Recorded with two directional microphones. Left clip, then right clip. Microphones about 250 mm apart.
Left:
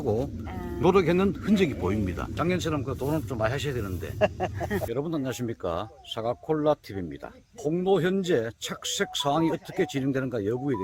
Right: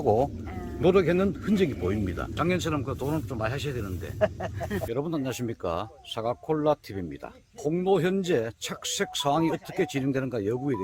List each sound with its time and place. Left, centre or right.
0.0 s speech: centre
4.2 s speech: left
4.9 s speech: centre